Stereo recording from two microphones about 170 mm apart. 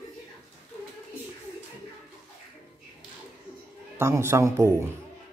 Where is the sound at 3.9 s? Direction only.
15° right (ahead or behind).